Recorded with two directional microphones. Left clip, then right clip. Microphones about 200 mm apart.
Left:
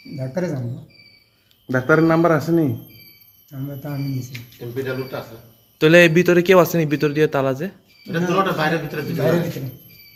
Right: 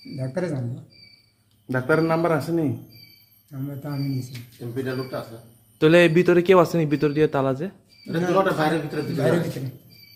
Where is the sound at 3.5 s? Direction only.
5° right (ahead or behind).